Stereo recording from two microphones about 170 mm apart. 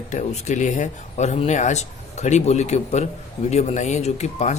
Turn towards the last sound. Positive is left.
turn(degrees=40)  # may be behind; listen again after turning